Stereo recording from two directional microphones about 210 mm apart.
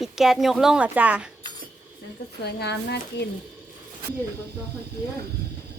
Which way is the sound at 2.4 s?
55° left (ahead or behind).